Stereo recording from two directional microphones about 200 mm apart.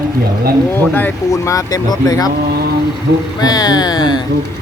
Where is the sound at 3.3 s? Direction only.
20° left (ahead or behind).